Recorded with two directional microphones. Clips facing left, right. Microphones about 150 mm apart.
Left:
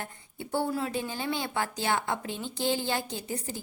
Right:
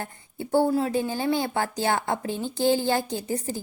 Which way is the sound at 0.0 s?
40° right (ahead or behind).